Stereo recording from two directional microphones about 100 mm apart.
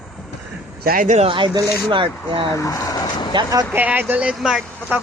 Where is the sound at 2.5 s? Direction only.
35° left (ahead or behind).